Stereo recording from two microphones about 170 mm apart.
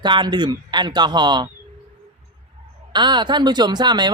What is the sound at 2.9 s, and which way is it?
Speech, 25° right (ahead or behind).